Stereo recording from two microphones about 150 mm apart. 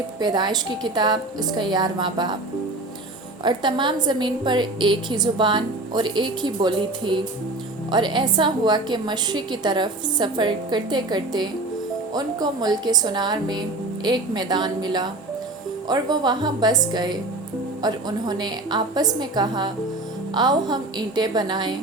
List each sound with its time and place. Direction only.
0.2 s a woman's voice: 30° right (ahead or behind)
3.4 s a woman's voice: 30° right (ahead or behind)